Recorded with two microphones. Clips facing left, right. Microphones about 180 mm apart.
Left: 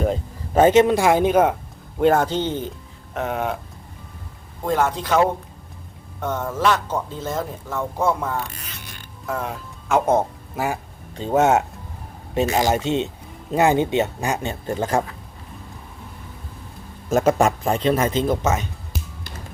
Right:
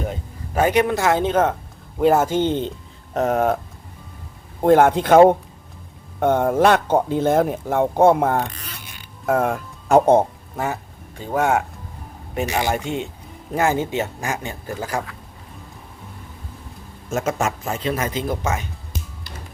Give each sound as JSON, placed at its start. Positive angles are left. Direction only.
{"t": 0.1, "sound": "speech", "side_deg": 30}
{"t": 2.0, "sound": "speech", "side_deg": -5}
{"t": 3.2, "sound": "speech", "side_deg": -40}
{"t": 4.6, "sound": "speech", "side_deg": -60}
{"t": 8.4, "sound": "zipper", "side_deg": -40}
{"t": 9.2, "sound": "speech", "side_deg": -50}
{"t": 10.5, "sound": "speech", "side_deg": 10}
{"t": 11.2, "sound": "speech", "side_deg": 25}
{"t": 17.1, "sound": "a man's voice", "side_deg": 35}